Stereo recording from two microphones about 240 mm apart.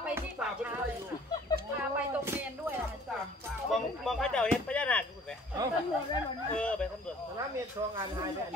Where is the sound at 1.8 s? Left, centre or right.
Centre.